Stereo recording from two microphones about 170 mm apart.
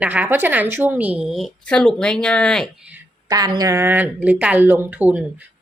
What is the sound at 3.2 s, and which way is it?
A woman's voice, 25° right (ahead or behind).